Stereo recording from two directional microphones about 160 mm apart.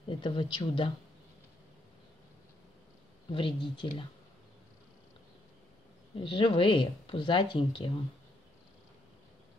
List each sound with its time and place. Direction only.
0.2 s speech: 30° left (ahead or behind)
3.3 s speech: 30° left (ahead or behind)
6.1 s speech: 30° left (ahead or behind)